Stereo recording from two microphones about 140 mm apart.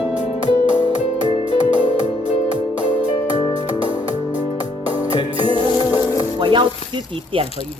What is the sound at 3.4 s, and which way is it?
Music, 30° left (ahead or behind).